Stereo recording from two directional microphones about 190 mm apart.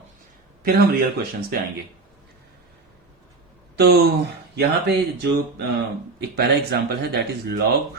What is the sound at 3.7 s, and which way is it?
Speech, 60° right (ahead or behind).